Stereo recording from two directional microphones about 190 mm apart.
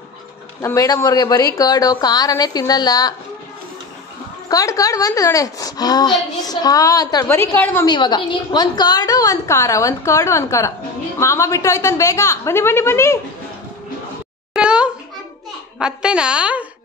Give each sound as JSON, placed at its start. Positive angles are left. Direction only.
{"t": 0.6, "sound": "a woman's voice", "side_deg": 15}
{"t": 4.5, "sound": "a woman's voice", "side_deg": 20}
{"t": 7.8, "sound": "a woman's voice", "side_deg": 20}
{"t": 14.5, "sound": "a sound", "side_deg": -5}
{"t": 15.8, "sound": "a woman's voice", "side_deg": -5}